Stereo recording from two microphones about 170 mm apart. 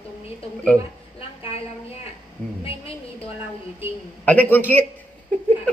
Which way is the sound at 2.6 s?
35° left (ahead or behind).